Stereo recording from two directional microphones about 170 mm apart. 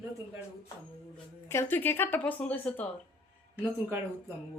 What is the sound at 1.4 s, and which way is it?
A woman's voice, 15° left (ahead or behind).